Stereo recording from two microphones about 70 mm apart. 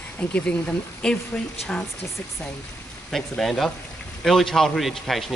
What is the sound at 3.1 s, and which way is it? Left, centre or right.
A man's voice, centre.